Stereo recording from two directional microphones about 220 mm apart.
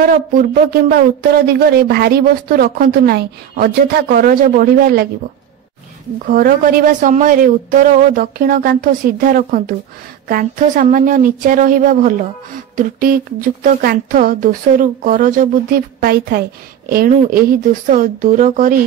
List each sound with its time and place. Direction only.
0.0 s speech: 40° right (ahead or behind)
6.2 s speech: 40° right (ahead or behind)